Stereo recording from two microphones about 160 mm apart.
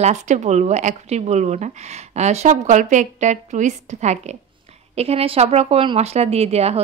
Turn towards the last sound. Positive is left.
turn(degrees=-40)  # may be behind; listen again after turning